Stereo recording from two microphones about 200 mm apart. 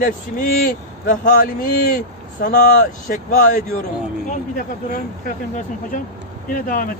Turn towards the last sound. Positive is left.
turn(degrees=45)  # may be behind; listen again after turning